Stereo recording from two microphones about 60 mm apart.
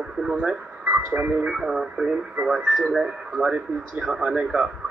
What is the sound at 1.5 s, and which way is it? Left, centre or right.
Speech, centre.